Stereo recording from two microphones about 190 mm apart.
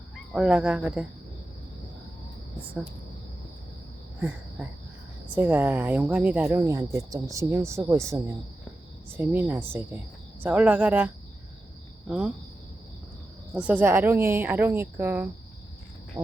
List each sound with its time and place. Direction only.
0.3 s speech: 5° right (ahead or behind)
4.2 s speech: 10° right (ahead or behind)
13.5 s speech: 5° right (ahead or behind)
16.1 s cricket: 15° right (ahead or behind)